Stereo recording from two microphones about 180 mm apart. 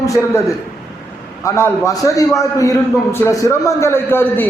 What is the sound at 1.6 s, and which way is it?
A man's voice, 15° left (ahead or behind).